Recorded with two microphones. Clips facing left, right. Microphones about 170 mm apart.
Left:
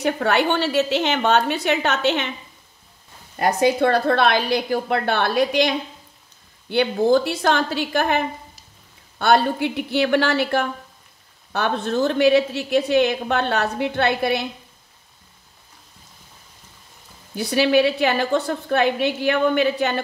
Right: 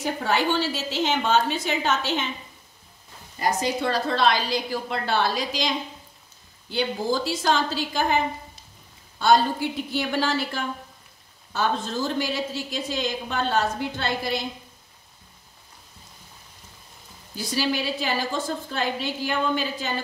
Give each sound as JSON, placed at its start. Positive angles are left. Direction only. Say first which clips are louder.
{"t": 0.0, "sound": "a woman's voice", "louder": "left 5 dB", "side_deg": 65}
{"t": 3.3, "sound": "a woman's voice", "louder": "left 7 dB", "side_deg": 60}
{"t": 9.2, "sound": "a woman's voice", "louder": "left 2 dB", "side_deg": 65}
{"t": 17.4, "sound": "a woman's voice", "louder": "left 9 dB", "side_deg": 60}